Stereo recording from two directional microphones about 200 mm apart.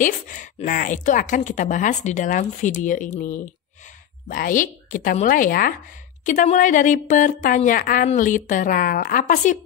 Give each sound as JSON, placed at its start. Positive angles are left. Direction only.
{"t": 0.0, "sound": "speech", "side_deg": 40}